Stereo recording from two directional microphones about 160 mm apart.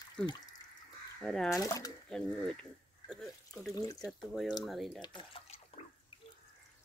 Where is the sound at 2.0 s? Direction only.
5° left (ahead or behind).